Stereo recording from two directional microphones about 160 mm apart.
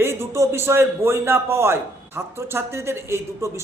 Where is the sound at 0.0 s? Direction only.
15° right (ahead or behind).